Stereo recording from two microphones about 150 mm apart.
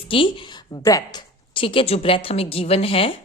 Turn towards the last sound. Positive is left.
turn(degrees=40)  # may be behind; listen again after turning